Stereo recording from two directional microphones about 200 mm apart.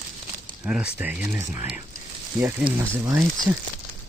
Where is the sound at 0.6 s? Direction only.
5° right (ahead or behind).